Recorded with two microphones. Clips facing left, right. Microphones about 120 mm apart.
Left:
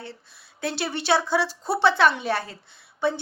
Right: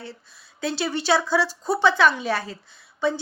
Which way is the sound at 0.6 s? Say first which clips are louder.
Right 2 dB; 60° left (ahead or behind).